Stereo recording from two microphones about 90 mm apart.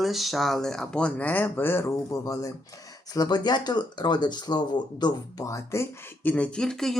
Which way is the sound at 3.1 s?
50° left (ahead or behind).